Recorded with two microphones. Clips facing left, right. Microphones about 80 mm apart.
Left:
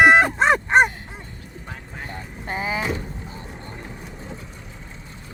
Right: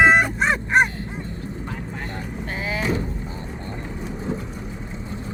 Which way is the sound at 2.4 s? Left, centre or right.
Left.